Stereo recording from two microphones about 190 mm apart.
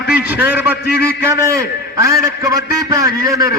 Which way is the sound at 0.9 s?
55° left (ahead or behind).